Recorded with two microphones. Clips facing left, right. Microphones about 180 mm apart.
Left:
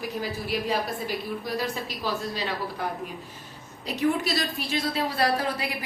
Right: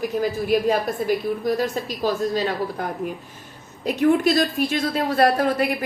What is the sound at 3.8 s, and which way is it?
A woman's voice, 50° right (ahead or behind).